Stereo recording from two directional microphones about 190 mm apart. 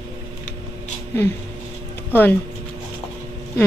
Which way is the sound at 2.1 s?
10° left (ahead or behind).